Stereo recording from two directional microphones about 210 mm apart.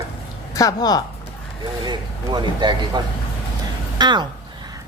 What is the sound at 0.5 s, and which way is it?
Speech, 15° left (ahead or behind).